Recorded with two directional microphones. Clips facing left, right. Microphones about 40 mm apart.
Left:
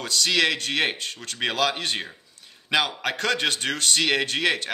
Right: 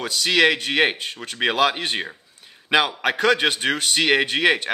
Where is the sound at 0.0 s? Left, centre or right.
Centre.